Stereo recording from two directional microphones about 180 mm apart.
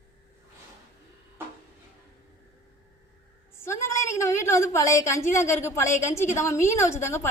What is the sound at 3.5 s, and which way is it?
A woman's voice, 15° left (ahead or behind).